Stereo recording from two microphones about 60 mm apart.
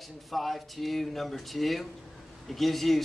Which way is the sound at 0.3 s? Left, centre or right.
Centre.